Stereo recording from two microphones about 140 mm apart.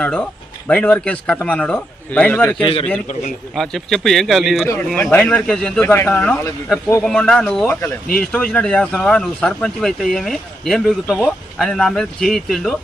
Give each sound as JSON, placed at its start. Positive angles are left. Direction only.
{"t": 0.0, "sound": "a man's voice", "side_deg": 10}
{"t": 2.6, "sound": "a man's voice", "side_deg": 45}
{"t": 3.5, "sound": "speech", "side_deg": 5}
{"t": 5.8, "sound": "a man's voice", "side_deg": 15}